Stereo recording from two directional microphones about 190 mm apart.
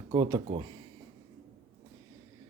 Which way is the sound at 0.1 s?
25° right (ahead or behind).